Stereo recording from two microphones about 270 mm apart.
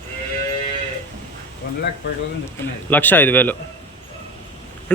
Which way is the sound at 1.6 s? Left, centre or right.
Left.